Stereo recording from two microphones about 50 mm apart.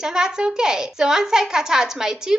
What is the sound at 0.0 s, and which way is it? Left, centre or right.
A woman's voice, centre.